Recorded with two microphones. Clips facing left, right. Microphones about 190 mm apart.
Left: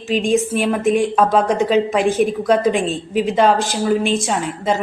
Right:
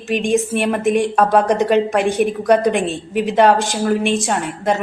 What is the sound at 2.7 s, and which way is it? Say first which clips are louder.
Speech: even; 60° right (ahead or behind).